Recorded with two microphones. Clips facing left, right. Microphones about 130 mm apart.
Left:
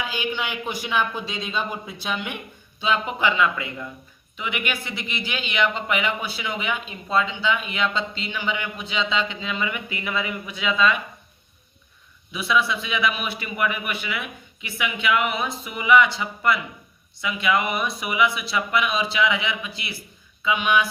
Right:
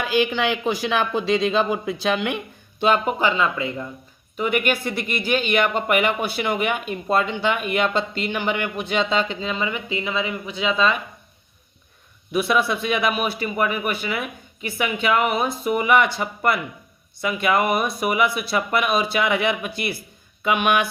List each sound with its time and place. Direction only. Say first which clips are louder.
0.0 s speech: right 7 dB; 85° right
2.8 s speech: right 4 dB; 45° right (ahead or behind); by 3.8 s 30° right (ahead or behind)
4.4 s speech: right 7 dB; 45° right (ahead or behind)
12.3 s speech: right 3 dB; 50° right (ahead or behind)